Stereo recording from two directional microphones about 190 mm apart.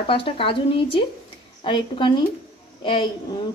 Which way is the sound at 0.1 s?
30° left (ahead or behind).